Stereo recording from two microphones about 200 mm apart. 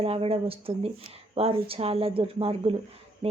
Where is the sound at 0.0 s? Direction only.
30° right (ahead or behind).